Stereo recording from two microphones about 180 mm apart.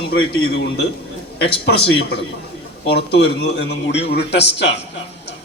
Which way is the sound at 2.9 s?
65° left (ahead or behind).